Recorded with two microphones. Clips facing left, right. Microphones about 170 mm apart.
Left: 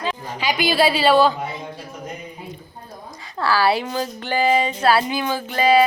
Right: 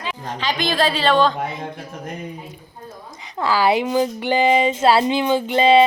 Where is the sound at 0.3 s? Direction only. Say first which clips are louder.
Even; 10° left (ahead or behind).